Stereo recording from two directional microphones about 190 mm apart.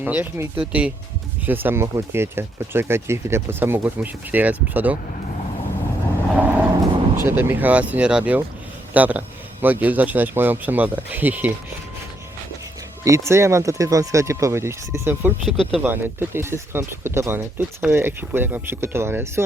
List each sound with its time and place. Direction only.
0.0 s speech: 10° right (ahead or behind)
6.3 s vehicle: 10° right (ahead or behind)
7.2 s speech: 10° right (ahead or behind)
13.1 s speech: 15° right (ahead or behind)
15.4 s speech: centre (ahead or behind)
15.9 s speech: 10° right (ahead or behind)